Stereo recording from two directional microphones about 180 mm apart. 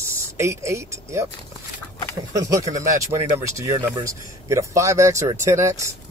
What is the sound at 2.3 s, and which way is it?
Speech, 20° right (ahead or behind).